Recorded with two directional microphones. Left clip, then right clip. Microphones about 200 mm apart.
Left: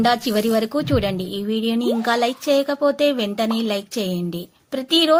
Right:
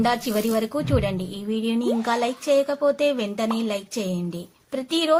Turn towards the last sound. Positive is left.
turn(degrees=25)  # may be behind; listen again after turning